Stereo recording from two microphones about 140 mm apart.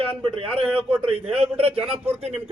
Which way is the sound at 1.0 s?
45° right (ahead or behind).